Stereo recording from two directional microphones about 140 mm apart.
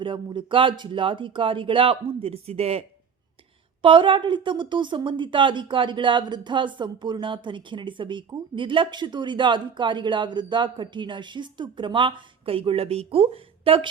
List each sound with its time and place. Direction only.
0.0 s speech: 35° right (ahead or behind)